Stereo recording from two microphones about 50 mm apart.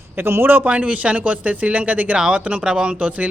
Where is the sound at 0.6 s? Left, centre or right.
Right.